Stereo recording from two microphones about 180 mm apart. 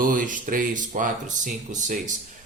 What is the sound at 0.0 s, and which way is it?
Speech, 45° right (ahead or behind).